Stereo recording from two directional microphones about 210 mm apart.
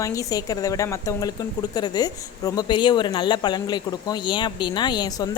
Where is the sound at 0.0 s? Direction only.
15° left (ahead or behind).